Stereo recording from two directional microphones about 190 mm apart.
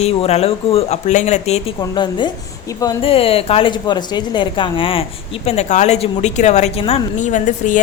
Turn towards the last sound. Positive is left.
turn(degrees=40)  # may be behind; listen again after turning